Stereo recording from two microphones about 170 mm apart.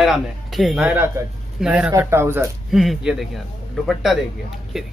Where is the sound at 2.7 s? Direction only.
Centre (ahead or behind).